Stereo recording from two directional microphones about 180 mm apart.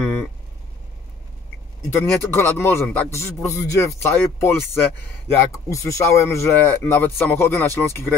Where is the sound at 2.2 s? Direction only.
10° left (ahead or behind).